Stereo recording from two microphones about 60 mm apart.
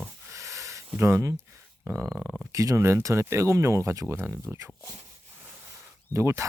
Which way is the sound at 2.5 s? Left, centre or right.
Right.